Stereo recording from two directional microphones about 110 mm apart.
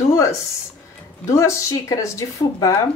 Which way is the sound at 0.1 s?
30° left (ahead or behind).